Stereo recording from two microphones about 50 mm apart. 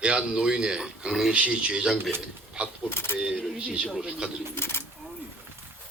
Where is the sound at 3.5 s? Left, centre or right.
Centre.